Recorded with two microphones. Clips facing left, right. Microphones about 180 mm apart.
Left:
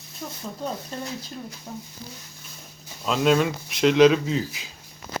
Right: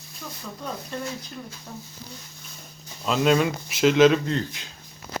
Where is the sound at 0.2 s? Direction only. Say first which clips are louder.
Left 3 dB; 35° left (ahead or behind).